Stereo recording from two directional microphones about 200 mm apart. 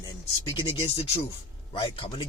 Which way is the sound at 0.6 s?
30° left (ahead or behind).